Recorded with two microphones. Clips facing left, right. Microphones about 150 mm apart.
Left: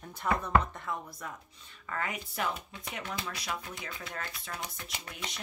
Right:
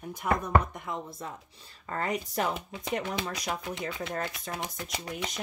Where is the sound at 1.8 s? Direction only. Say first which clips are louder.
Right 5 dB; 35° right (ahead or behind).